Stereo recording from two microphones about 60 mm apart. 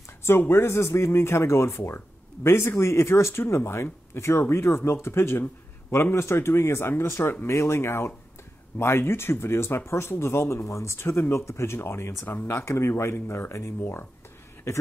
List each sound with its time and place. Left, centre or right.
0.5 s speech: left
14.7 s a man's voice: left